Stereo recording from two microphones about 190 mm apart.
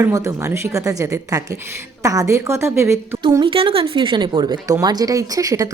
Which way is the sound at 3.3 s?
25° right (ahead or behind).